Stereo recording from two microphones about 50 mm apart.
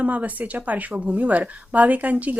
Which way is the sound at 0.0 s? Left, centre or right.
Right.